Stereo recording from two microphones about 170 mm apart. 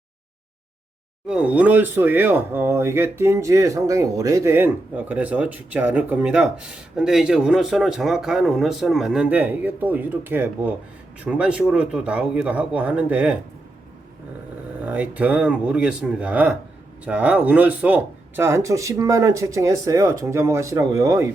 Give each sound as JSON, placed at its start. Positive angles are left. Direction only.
{"t": 1.3, "sound": "speech", "side_deg": -5}
{"t": 14.8, "sound": "speech", "side_deg": -10}